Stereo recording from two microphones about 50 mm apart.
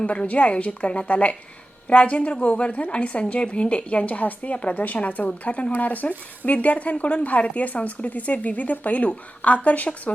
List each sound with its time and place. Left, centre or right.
0.0 s speech: centre